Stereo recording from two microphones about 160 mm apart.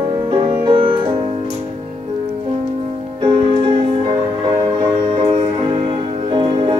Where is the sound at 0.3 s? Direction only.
30° right (ahead or behind).